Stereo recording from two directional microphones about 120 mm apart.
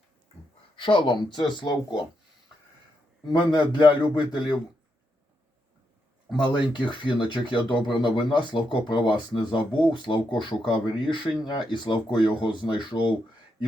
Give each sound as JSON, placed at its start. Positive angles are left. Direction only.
{"t": 0.8, "sound": "speech", "side_deg": 45}
{"t": 3.3, "sound": "speech", "side_deg": 40}
{"t": 6.3, "sound": "speech", "side_deg": 40}